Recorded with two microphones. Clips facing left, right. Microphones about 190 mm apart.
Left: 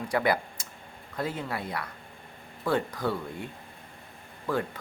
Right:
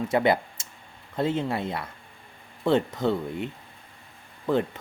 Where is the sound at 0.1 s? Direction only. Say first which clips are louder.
Right 3 dB; 25° right (ahead or behind).